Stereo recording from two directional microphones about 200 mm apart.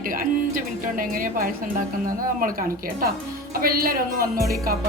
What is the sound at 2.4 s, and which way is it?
Speech, 45° right (ahead or behind).